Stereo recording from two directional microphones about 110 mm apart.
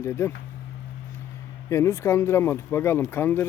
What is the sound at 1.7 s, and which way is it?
Speech, 25° left (ahead or behind).